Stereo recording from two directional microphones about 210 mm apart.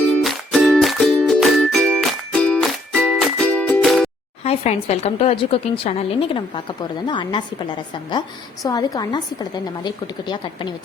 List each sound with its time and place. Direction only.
0.1 s music: centre (ahead or behind)
4.4 s a woman's voice: 30° left (ahead or behind)
8.6 s a woman's voice: 15° left (ahead or behind)